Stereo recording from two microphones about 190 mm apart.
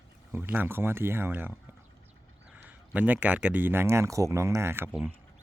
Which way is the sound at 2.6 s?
10° right (ahead or behind).